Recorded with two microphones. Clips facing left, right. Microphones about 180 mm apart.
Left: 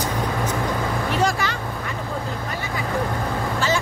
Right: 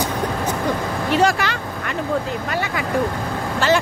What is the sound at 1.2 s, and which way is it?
Vehicle, 70° right (ahead or behind).